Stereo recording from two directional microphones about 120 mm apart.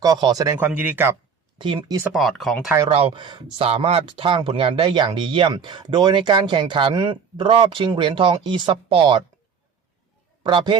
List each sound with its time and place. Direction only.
0.0 s a man's voice: 35° right (ahead or behind)
0.6 s speech: 15° right (ahead or behind)
1.5 s a man's voice: 40° right (ahead or behind)
2.1 s speech: centre (ahead or behind)
2.9 s speech: 45° right (ahead or behind)
3.7 s speech: 55° right (ahead or behind)
10.4 s a man's voice: 40° right (ahead or behind)